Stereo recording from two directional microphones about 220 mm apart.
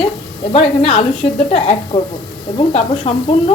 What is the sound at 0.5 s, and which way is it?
Speech, 25° left (ahead or behind).